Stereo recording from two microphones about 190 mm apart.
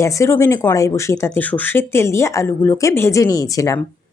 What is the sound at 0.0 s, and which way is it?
A woman's voice, 15° left (ahead or behind).